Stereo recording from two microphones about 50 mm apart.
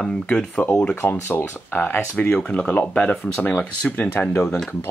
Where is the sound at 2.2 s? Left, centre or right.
Left.